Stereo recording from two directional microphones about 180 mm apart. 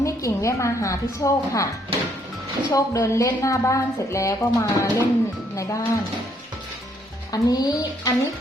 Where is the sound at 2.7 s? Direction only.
20° left (ahead or behind).